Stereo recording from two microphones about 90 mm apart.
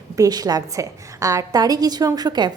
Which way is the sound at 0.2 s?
45° right (ahead or behind).